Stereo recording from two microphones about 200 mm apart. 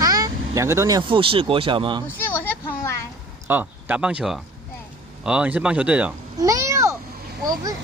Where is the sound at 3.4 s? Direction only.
10° right (ahead or behind).